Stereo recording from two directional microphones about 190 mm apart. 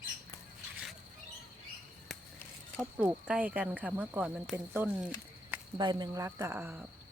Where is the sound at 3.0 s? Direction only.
5° right (ahead or behind).